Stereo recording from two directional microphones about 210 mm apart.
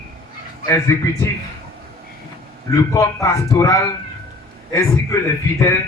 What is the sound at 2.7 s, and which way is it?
A man's voice, 15° left (ahead or behind).